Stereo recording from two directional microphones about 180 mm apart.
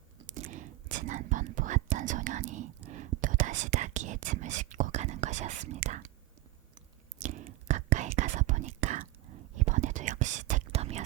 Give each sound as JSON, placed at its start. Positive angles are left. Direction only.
{"t": 0.3, "sound": "whispering", "side_deg": -45}